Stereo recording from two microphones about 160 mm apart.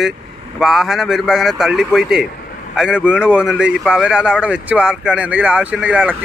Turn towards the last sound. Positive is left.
turn(degrees=-5)  # may be behind; listen again after turning